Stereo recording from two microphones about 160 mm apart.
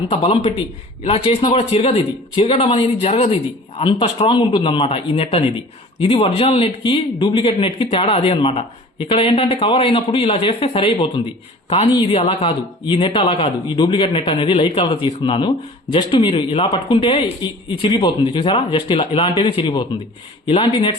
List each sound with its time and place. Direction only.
0.1 s a man's voice: 40° left (ahead or behind)